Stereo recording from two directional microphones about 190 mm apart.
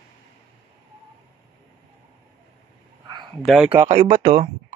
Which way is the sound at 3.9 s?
40° right (ahead or behind).